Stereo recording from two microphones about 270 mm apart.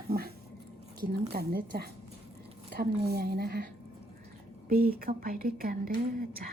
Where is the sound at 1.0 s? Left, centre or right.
Right.